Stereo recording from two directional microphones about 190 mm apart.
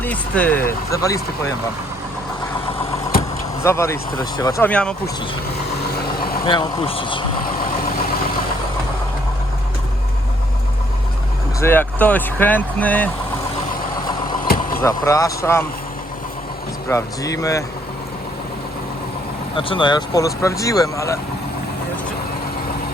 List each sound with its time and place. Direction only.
0.0 s speech: 10° left (ahead or behind)
3.6 s speech: 15° left (ahead or behind)
4.7 s speech: 5° left (ahead or behind)
6.4 s speech: 25° left (ahead or behind)
11.6 s speech: 10° left (ahead or behind)
14.4 s vehicle: 50° left (ahead or behind)
14.8 s speech: 15° left (ahead or behind)
16.9 s speech: 15° left (ahead or behind)
19.5 s speech: 25° left (ahead or behind)